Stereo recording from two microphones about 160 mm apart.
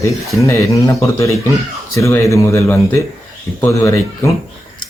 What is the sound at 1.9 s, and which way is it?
Speech, 20° left (ahead or behind).